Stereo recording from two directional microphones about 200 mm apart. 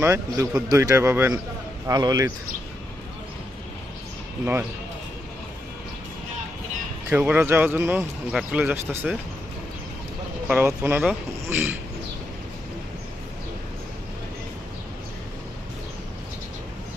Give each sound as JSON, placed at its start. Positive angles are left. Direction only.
{"t": 0.0, "sound": "speech", "side_deg": -15}
{"t": 7.1, "sound": "speech", "side_deg": -10}
{"t": 10.5, "sound": "speech", "side_deg": -10}